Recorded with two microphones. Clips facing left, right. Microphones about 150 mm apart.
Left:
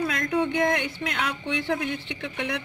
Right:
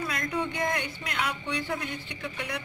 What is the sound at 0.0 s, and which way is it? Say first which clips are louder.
Speech: left 6 dB; 90° left.